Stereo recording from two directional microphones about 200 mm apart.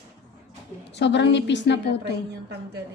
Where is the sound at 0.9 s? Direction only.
60° left (ahead or behind).